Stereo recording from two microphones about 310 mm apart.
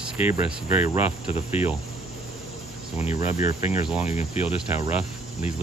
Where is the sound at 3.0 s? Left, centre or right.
Left.